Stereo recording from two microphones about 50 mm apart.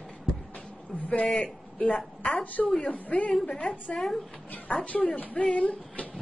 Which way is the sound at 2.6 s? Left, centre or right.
Centre.